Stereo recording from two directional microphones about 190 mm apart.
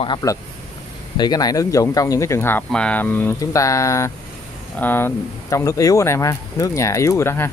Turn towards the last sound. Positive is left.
turn(degrees=15)  # may be behind; listen again after turning